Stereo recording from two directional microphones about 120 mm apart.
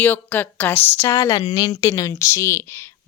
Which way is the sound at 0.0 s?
15° left (ahead or behind).